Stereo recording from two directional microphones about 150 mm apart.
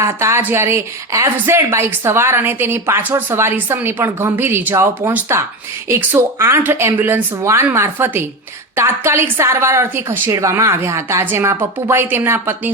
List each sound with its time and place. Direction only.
0.0 s a woman's voice: 20° right (ahead or behind)